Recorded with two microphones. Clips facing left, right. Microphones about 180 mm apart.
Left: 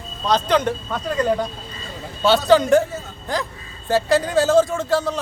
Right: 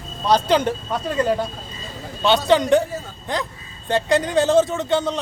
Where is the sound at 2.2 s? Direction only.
Centre (ahead or behind).